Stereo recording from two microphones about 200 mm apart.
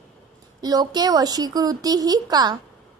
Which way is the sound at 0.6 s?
20° right (ahead or behind).